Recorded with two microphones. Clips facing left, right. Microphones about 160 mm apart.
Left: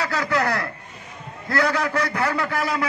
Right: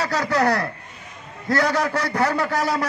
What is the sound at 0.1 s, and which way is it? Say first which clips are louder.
A man's voice: right 3 dB; 35° right (ahead or behind).